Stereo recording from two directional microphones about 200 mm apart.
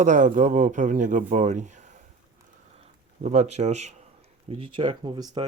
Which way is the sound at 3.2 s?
35° right (ahead or behind).